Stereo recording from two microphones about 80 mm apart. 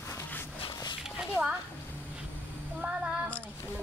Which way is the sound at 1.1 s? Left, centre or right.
Centre.